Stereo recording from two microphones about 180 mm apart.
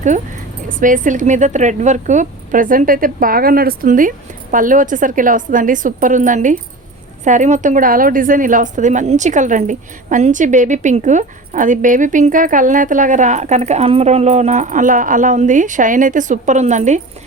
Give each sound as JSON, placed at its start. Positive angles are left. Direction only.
{"t": 0.7, "sound": "a woman's voice", "side_deg": -45}